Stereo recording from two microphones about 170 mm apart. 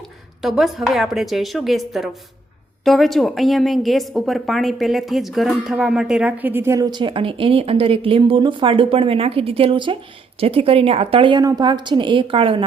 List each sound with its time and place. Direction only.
0.4 s a woman's voice: centre (ahead or behind); by 12.6 s 30° right (ahead or behind)